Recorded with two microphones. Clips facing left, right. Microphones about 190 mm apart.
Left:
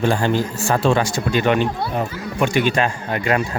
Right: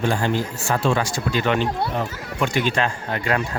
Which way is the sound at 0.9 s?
25° left (ahead or behind).